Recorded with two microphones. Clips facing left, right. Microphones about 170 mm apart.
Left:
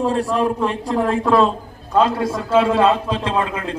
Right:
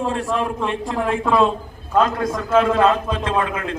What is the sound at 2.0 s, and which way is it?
A man's voice, 30° left (ahead or behind).